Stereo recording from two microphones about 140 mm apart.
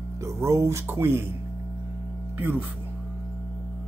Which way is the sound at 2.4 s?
15° right (ahead or behind).